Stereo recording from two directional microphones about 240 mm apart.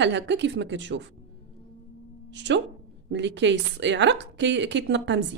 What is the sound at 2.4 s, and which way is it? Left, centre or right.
A woman's voice, right.